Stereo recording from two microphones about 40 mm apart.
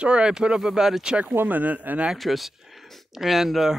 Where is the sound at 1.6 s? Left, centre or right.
Right.